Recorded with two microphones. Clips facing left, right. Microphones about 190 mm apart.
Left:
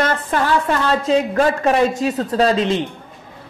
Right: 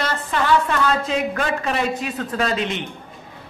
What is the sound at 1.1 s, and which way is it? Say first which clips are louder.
Speech: left 6 dB; 35° left (ahead or behind).